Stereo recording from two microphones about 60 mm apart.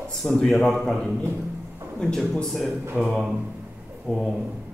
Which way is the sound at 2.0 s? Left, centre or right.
Centre.